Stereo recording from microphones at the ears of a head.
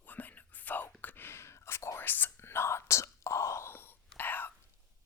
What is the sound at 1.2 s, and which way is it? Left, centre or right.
Whispering, left.